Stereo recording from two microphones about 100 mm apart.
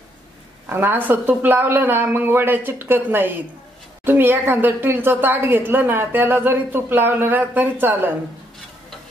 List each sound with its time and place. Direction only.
0.7 s a woman's voice: 20° right (ahead or behind)